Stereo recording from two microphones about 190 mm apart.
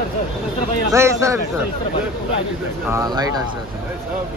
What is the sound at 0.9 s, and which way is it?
Speech, 15° right (ahead or behind).